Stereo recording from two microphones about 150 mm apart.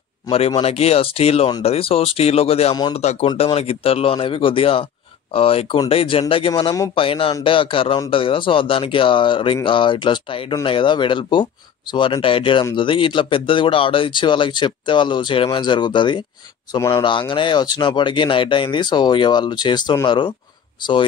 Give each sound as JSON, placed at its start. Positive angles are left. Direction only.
{"t": 0.3, "sound": "speech", "side_deg": 40}